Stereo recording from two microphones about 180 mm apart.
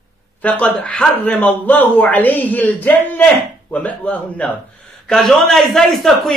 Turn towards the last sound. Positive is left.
turn(degrees=0)  # may be behind; listen again after turning